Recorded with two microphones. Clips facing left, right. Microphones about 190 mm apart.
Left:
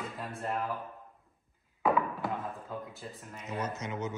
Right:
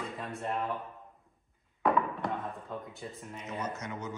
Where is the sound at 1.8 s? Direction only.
5° left (ahead or behind).